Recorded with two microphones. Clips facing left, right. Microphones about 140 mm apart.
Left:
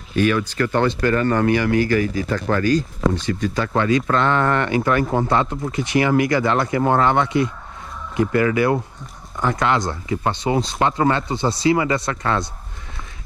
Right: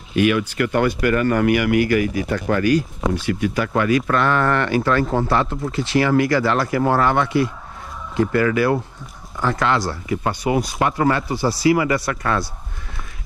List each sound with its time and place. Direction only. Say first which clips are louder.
0.1 s speech: right 1 dB; 35° left (ahead or behind)